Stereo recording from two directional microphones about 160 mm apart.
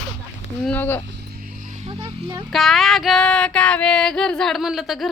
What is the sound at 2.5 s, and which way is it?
Female singing, centre (ahead or behind).